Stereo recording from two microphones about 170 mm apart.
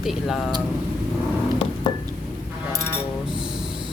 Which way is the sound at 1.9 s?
30° left (ahead or behind).